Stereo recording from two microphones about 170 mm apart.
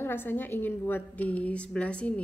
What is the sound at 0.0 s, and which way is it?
A woman's voice, 10° left (ahead or behind).